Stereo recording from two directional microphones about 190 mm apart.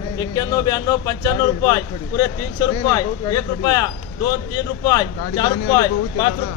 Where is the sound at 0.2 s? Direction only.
20° left (ahead or behind).